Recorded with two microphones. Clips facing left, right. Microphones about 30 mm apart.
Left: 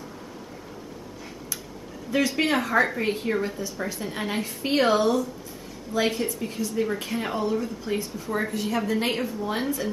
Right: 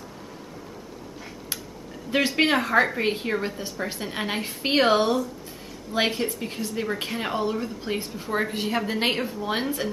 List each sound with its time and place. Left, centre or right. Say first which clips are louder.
2.0 s a woman's voice: right 2 dB; right
2.5 s a woman's voice: right 1 dB; right
9.1 s a woman's voice: right 1 dB; centre